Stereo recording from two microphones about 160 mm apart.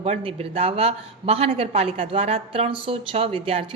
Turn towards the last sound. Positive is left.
turn(degrees=-35)  # may be behind; listen again after turning